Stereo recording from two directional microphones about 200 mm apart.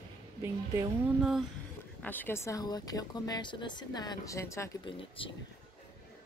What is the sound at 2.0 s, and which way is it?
Speech, 10° left (ahead or behind).